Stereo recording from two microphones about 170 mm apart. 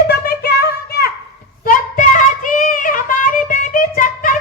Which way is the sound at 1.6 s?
50° left (ahead or behind).